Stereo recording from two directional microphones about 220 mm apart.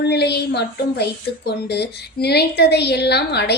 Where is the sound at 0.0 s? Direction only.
50° left (ahead or behind).